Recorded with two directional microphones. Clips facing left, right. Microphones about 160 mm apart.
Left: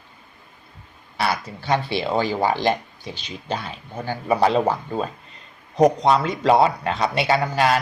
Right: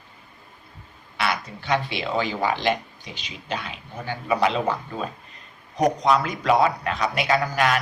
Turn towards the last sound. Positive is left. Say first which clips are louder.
# left 2 dB
turn(degrees=30)  # may be behind; listen again after turning